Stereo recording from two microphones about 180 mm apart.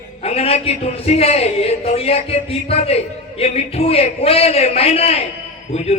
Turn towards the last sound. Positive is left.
turn(degrees=35)  # may be behind; listen again after turning